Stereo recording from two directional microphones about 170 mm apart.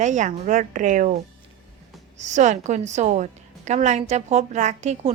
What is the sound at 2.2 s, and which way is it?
A woman's voice, 45° right (ahead or behind).